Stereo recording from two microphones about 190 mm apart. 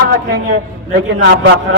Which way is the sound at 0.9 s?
65° right (ahead or behind).